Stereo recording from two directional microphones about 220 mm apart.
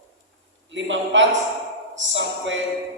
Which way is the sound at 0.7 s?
55° right (ahead or behind).